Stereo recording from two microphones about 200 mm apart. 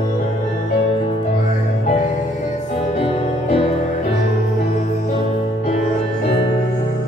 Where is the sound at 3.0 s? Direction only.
30° left (ahead or behind).